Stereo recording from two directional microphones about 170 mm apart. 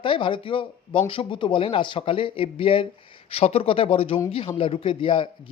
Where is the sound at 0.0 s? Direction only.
30° left (ahead or behind).